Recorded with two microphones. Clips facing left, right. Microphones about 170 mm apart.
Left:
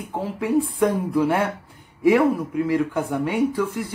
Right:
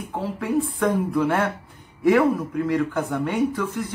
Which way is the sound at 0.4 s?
10° left (ahead or behind).